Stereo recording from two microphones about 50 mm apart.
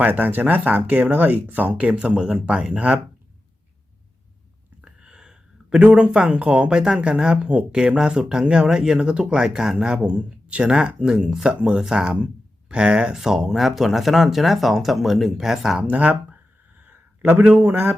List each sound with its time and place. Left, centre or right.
0.0 s speech: right
4.8 s speech: centre
15.8 s a sound: right
17.5 s a man's voice: right